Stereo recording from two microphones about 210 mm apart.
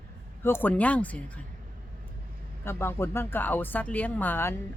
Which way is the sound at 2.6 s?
10° left (ahead or behind).